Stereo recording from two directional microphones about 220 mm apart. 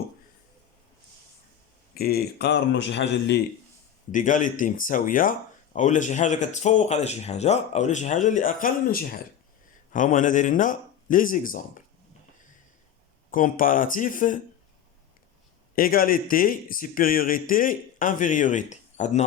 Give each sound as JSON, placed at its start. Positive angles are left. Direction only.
{"t": 2.0, "sound": "speech", "side_deg": 45}
{"t": 4.1, "sound": "speech", "side_deg": 35}
{"t": 13.3, "sound": "speech", "side_deg": 40}
{"t": 15.7, "sound": "speech", "side_deg": 40}